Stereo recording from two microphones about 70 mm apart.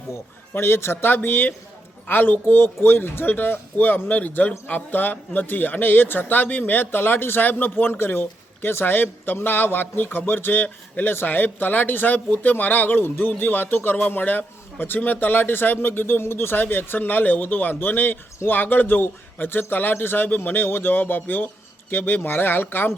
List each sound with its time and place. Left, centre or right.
0.1 s a man's voice: left